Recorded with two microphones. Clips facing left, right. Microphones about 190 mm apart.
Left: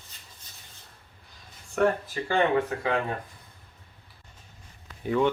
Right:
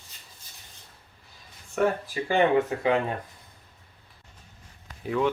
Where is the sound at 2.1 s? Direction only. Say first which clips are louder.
Right 2 dB; 15° right (ahead or behind).